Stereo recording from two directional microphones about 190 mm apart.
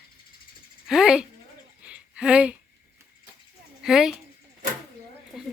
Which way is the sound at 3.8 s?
Centre (ahead or behind).